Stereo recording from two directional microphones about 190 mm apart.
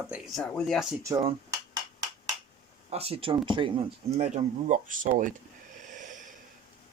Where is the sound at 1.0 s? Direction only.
25° right (ahead or behind).